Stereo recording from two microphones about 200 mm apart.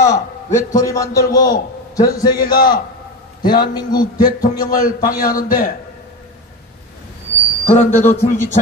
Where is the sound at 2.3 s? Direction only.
45° left (ahead or behind).